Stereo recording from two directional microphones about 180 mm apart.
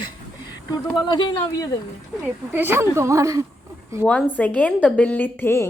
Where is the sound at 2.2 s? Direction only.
10° right (ahead or behind).